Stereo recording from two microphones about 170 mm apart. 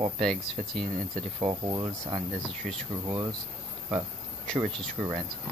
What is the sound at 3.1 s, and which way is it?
Speech, 25° right (ahead or behind).